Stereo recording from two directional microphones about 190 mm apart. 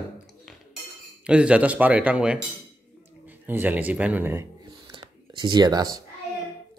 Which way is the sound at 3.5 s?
10° right (ahead or behind).